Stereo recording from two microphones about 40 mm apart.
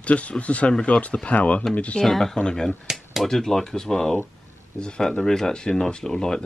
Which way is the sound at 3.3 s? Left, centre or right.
Centre.